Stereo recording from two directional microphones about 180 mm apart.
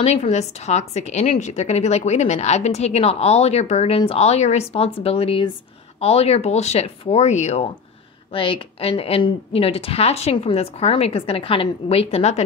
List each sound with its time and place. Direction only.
0.0 s a woman's voice: 35° left (ahead or behind)